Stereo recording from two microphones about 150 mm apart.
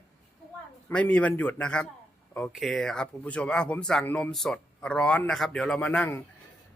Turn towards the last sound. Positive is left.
turn(degrees=10)  # may be behind; listen again after turning